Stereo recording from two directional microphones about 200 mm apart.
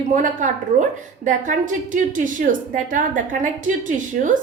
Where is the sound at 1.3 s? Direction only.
40° right (ahead or behind).